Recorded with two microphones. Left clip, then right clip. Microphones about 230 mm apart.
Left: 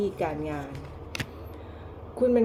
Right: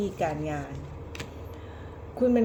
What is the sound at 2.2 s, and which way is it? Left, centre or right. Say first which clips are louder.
Speech: left 1 dB; centre.